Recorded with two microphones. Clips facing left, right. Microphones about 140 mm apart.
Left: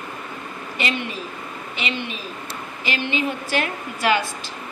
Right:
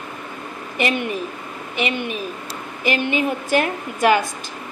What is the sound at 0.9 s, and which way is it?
A woman's voice, 50° right (ahead or behind).